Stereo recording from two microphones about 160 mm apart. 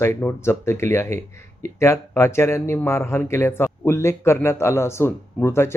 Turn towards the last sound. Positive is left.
turn(degrees=15)  # may be behind; listen again after turning